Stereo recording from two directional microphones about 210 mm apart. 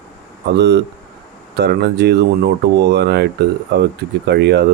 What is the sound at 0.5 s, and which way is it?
Speech, 55° right (ahead or behind).